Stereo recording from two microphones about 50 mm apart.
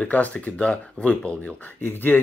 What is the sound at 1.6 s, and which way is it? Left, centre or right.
Speech, left.